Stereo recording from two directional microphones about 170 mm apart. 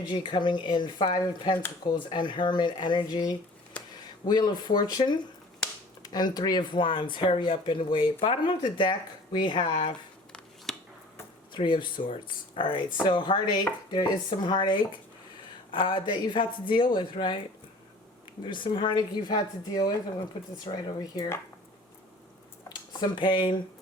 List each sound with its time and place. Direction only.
0.0 s speech: 30° left (ahead or behind)
10.7 s finger snapping: centre (ahead or behind)
11.5 s speech: 30° left (ahead or behind)
18.4 s speech: 30° left (ahead or behind)
22.9 s speech: 25° left (ahead or behind)